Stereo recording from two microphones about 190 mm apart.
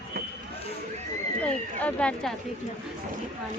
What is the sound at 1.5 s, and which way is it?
Speech, 5° left (ahead or behind).